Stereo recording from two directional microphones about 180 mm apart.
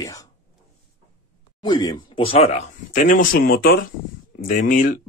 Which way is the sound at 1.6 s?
20° left (ahead or behind).